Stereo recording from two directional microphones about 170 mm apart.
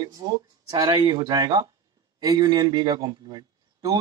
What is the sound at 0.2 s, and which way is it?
A man's voice, 25° right (ahead or behind).